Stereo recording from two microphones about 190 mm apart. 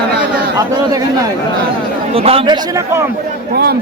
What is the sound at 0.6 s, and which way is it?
Speech, 20° right (ahead or behind).